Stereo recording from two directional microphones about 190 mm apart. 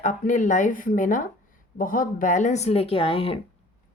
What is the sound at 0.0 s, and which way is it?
A woman's voice, 40° left (ahead or behind).